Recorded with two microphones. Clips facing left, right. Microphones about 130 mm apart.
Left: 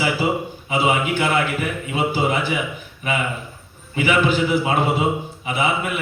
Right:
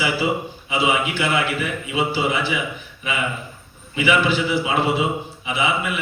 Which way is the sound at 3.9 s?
45° left (ahead or behind).